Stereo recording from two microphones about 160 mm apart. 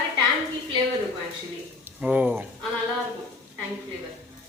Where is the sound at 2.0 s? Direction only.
10° right (ahead or behind).